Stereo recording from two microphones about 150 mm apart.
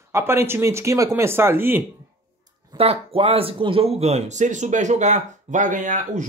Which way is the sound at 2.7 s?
40° right (ahead or behind).